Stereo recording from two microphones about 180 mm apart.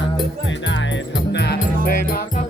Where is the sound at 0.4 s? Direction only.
90° left; by 1.5 s 70° left (ahead or behind).